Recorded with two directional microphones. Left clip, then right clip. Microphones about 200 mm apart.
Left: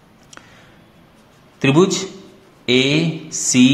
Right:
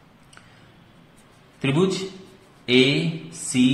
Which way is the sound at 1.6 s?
35° left (ahead or behind).